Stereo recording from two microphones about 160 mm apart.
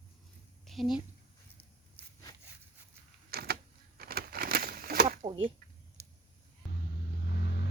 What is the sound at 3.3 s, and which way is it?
Power windows, 75° right (ahead or behind).